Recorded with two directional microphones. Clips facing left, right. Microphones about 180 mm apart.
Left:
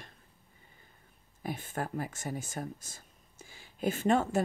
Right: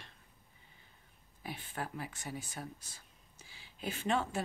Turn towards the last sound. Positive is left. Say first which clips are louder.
# left 7 dB
turn(degrees=45)  # may be behind; listen again after turning